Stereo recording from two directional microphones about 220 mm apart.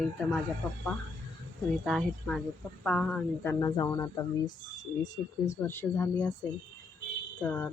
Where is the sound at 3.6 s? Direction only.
15° left (ahead or behind).